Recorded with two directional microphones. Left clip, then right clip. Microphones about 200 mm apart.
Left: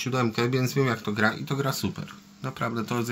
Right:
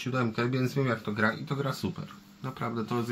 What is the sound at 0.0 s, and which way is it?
Speech, 55° left (ahead or behind).